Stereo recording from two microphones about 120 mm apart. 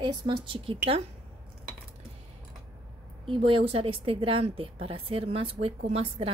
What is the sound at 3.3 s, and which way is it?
A woman's voice, 50° right (ahead or behind).